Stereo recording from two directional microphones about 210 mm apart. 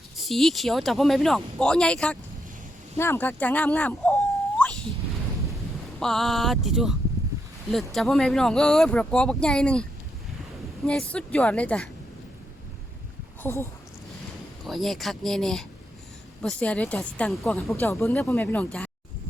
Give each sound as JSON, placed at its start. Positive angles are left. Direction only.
{"t": 0.2, "sound": "speech", "side_deg": 0}
{"t": 6.0, "sound": "speech", "side_deg": 0}
{"t": 10.8, "sound": "speech", "side_deg": 5}
{"t": 13.4, "sound": "speech", "side_deg": 10}
{"t": 14.6, "sound": "speech", "side_deg": 0}